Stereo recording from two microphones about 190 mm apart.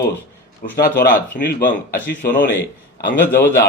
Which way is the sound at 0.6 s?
50° left (ahead or behind).